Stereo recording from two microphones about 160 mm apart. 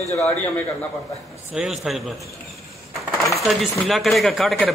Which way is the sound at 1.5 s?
Centre (ahead or behind).